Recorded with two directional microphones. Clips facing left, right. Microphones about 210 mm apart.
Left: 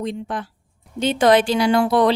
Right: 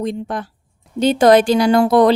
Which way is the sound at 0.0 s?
45° right (ahead or behind).